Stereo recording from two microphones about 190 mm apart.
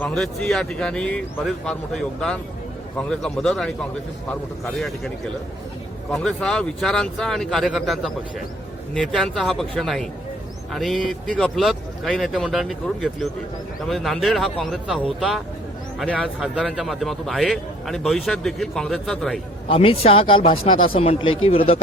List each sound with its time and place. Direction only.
0.0 s a man's voice: 5° left (ahead or behind)
19.6 s speech: 30° left (ahead or behind)